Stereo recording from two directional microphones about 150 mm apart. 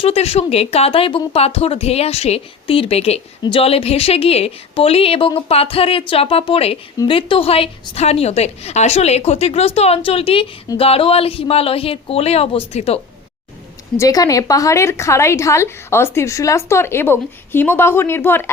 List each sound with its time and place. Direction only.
0.0 s a woman's voice: 40° left (ahead or behind)
13.9 s a woman's voice: 20° left (ahead or behind)